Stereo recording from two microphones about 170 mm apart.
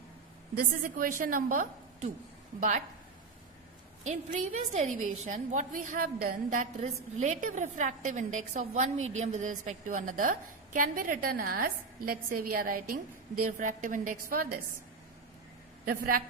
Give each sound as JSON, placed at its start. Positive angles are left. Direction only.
{"t": 0.5, "sound": "a woman's voice", "side_deg": -60}
{"t": 4.0, "sound": "a woman's voice", "side_deg": -45}
{"t": 15.9, "sound": "a woman's voice", "side_deg": -60}